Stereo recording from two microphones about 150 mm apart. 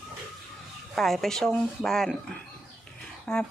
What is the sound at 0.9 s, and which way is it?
Speech, centre (ahead or behind).